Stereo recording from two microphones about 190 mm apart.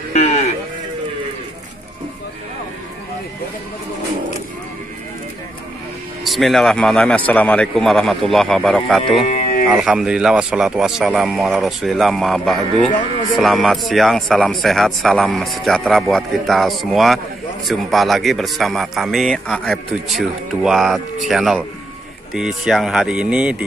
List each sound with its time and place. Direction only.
0.1 s sheep: 35° left (ahead or behind)
6.2 s speech: centre (ahead or behind)
9.3 s a sound: 40° left (ahead or behind)
9.7 s speech: 5° right (ahead or behind)